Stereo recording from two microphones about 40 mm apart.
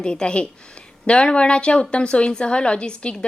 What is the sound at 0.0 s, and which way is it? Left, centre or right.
A woman's voice, left.